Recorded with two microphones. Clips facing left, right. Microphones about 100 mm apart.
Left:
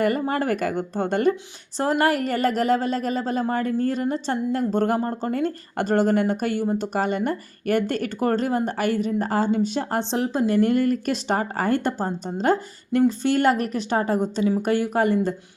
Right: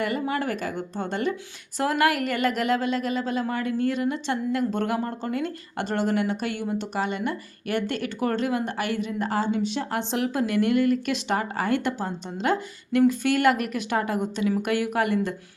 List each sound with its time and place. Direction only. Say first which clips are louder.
0.0 s a woman's voice: left 4 dB; 45° left (ahead or behind)
1.8 s a woman's voice: left 2 dB; 35° left (ahead or behind)
10.0 s a woman's voice: left 2 dB; 30° left (ahead or behind)